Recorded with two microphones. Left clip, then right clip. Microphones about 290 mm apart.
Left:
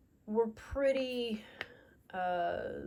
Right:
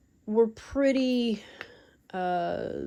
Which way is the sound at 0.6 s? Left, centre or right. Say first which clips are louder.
Right 6 dB; right.